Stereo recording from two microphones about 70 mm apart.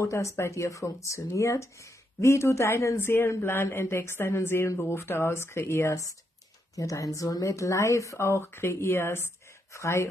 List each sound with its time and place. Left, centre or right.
0.0 s speech: left
6.7 s speech: left